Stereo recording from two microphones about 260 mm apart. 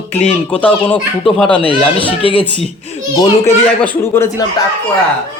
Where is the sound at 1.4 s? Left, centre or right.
Centre.